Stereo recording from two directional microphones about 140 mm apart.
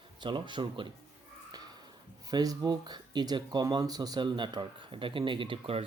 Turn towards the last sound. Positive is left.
turn(degrees=-40)  # may be behind; listen again after turning